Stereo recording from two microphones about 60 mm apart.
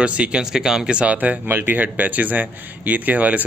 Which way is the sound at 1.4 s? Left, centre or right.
Right.